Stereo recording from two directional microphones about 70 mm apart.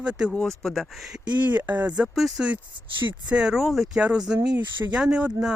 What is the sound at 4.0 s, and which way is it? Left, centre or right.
Speech, centre.